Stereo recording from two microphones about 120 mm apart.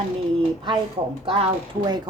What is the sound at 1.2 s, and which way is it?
Speech, 55° right (ahead or behind).